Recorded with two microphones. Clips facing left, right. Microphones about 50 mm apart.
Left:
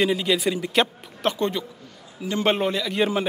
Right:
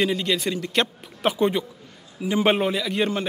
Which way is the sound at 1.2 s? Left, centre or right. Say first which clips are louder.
Right 3 dB; centre.